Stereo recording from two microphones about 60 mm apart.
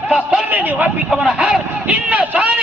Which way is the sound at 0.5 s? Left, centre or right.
Right.